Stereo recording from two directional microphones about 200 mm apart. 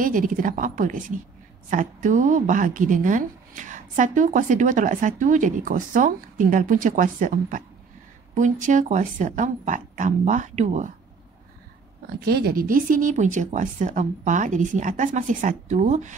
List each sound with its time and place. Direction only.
0.0 s speech: 40° right (ahead or behind)
12.2 s speech: 55° right (ahead or behind); by 16.2 s 35° right (ahead or behind)